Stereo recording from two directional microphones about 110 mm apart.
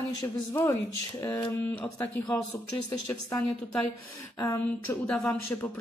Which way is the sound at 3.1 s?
15° left (ahead or behind).